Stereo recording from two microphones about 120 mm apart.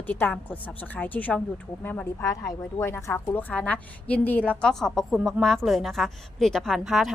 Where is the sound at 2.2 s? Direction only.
25° left (ahead or behind).